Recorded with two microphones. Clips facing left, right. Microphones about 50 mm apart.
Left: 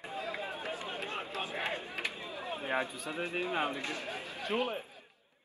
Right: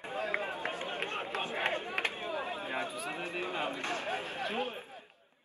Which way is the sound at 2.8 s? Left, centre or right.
Right.